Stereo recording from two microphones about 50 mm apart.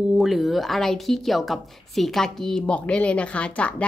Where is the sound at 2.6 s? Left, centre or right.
Left.